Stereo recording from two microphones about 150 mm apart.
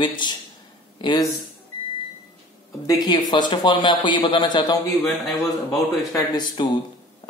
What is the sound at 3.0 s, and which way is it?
Speech, 30° left (ahead or behind).